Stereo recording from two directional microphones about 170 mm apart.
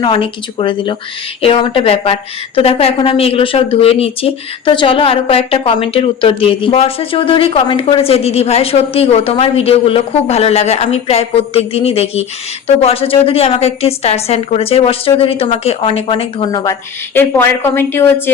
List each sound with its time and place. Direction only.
0.0 s speech: 30° left (ahead or behind)
17.2 s a woman's voice: 10° left (ahead or behind)